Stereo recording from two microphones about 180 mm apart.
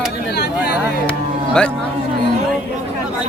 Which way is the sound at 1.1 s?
5° left (ahead or behind).